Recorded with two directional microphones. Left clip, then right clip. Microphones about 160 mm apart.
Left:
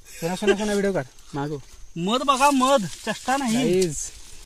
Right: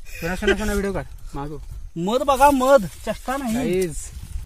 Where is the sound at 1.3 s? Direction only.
35° left (ahead or behind).